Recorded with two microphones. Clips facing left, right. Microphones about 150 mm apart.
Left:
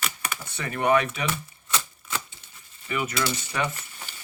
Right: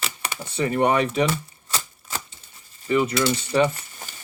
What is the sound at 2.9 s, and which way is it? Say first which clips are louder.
Speech: right 7 dB; 30° right (ahead or behind).